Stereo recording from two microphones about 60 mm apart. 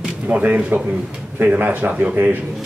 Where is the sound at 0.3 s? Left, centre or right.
Right.